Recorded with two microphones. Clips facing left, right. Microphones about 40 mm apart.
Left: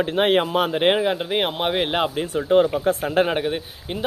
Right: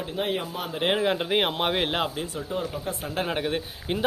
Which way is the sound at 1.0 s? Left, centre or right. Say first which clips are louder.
Left 2 dB; centre.